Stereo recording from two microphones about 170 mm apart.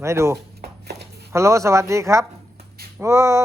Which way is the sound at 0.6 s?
75° right (ahead or behind).